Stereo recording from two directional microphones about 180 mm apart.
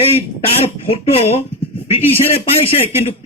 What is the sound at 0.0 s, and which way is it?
Speech, 30° left (ahead or behind).